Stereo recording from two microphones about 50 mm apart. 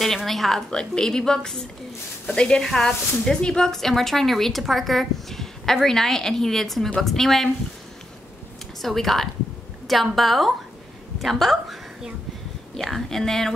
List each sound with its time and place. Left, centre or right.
0.0 s a woman's voice: centre
8.8 s a woman's voice: centre